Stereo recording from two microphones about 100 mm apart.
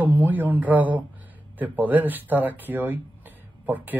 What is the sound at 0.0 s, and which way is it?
Speech, 20° right (ahead or behind).